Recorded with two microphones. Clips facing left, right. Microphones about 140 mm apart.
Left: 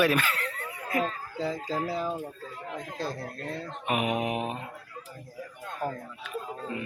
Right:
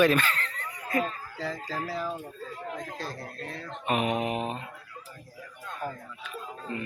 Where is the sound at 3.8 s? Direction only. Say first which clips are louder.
Right 1 dB; 10° left (ahead or behind).